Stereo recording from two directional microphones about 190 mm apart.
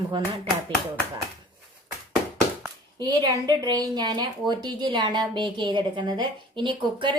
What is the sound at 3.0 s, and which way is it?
A woman's voice, 20° right (ahead or behind).